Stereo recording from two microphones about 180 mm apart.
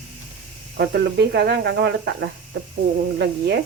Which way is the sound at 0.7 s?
70° right (ahead or behind).